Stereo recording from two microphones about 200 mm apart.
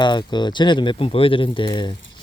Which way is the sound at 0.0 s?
20° left (ahead or behind).